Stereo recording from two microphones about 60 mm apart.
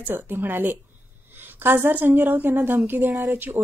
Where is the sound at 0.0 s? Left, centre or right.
Right.